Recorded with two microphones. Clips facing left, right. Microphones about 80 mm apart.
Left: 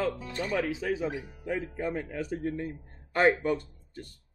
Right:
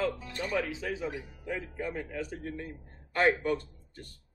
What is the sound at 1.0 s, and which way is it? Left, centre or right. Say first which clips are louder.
Speech: left 3 dB; left.